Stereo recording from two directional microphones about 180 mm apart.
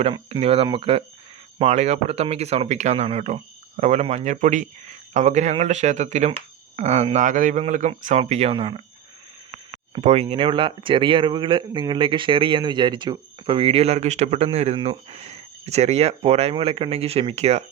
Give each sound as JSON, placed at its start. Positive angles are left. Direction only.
{"t": 0.0, "sound": "speech", "side_deg": -35}
{"t": 9.9, "sound": "speech", "side_deg": -35}